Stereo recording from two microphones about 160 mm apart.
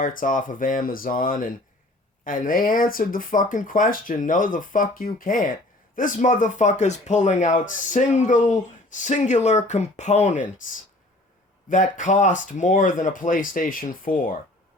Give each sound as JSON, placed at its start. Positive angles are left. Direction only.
{"t": 0.0, "sound": "speech", "side_deg": 60}
{"t": 11.7, "sound": "speech", "side_deg": 50}